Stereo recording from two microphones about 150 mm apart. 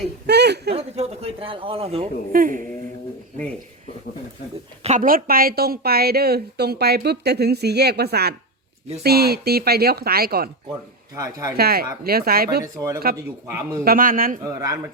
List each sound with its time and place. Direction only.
0.3 s a woman's voice: 90° right
0.7 s speech: 40° right (ahead or behind)
2.3 s speech: 65° right (ahead or behind)
4.8 s speech: 50° right (ahead or behind)
5.0 s a woman's voice: 75° right (ahead or behind); by 10.5 s 90° right
11.1 s speech: 20° right (ahead or behind)
11.5 s a woman's voice: 90° right
12.6 s speech: 20° right (ahead or behind)
13.8 s speech: 70° right (ahead or behind)
14.4 s speech: 20° right (ahead or behind)